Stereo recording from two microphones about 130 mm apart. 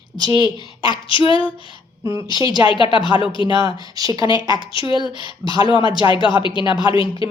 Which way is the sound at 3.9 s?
30° right (ahead or behind).